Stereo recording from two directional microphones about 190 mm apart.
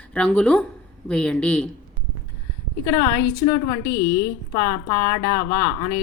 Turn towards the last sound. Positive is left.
turn(degrees=15)  # may be behind; listen again after turning